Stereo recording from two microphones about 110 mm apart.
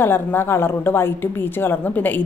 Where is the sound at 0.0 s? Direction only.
20° left (ahead or behind).